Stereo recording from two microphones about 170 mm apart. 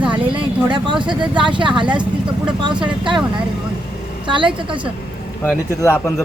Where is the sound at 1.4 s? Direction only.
30° right (ahead or behind).